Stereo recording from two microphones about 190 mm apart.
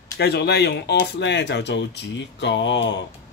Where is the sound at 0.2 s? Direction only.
60° left (ahead or behind).